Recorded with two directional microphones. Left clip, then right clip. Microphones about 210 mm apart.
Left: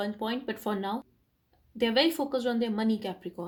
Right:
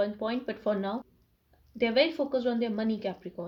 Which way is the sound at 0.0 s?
50° left (ahead or behind).